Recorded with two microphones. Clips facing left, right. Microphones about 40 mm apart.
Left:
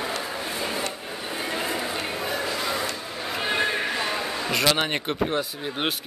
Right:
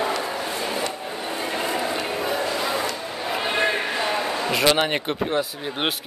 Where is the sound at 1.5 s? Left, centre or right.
Centre.